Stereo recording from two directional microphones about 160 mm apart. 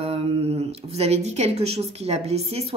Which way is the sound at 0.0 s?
35° right (ahead or behind).